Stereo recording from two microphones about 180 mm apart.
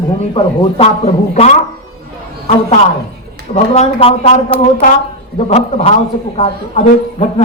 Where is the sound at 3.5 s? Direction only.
35° left (ahead or behind).